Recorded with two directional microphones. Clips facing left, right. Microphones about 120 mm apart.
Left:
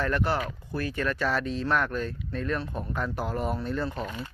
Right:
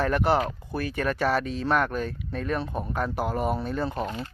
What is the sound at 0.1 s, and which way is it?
Speech, 15° right (ahead or behind).